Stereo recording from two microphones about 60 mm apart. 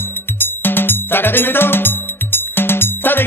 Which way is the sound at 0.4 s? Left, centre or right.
Left.